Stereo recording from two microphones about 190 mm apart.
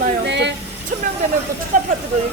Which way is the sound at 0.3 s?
65° right (ahead or behind).